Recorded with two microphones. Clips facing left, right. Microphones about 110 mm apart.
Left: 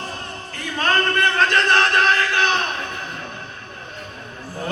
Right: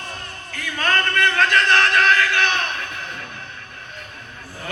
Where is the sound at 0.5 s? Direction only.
30° left (ahead or behind).